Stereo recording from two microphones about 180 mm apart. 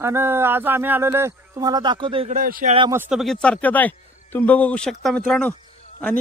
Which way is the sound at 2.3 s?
50° right (ahead or behind).